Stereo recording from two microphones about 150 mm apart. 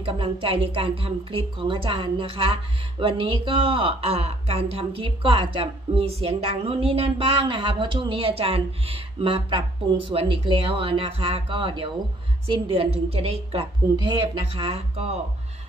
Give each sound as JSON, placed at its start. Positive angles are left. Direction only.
{"t": 0.0, "sound": "a woman's voice", "side_deg": -35}